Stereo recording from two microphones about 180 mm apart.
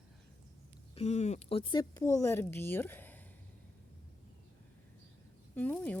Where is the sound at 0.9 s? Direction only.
35° left (ahead or behind); by 3.2 s 10° left (ahead or behind).